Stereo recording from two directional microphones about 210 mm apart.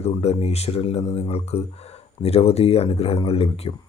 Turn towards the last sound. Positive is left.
turn(degrees=30)  # may be behind; listen again after turning